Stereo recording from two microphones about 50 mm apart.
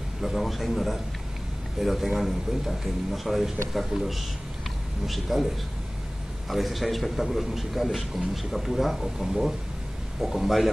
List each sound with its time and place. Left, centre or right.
0.2 s a man's voice: centre
6.5 s a man's voice: centre